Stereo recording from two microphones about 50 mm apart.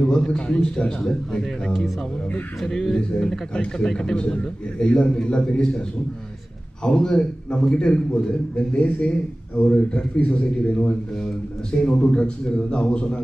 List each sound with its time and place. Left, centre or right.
0.0 s a man's voice: centre
2.6 s a man's voice: centre